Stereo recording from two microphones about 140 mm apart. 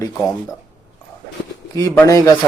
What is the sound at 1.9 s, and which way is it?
Speech, 20° left (ahead or behind).